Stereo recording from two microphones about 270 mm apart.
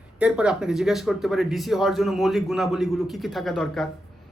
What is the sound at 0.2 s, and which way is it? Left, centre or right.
Speech, centre.